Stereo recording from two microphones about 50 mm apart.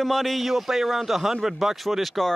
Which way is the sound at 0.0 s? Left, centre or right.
Centre.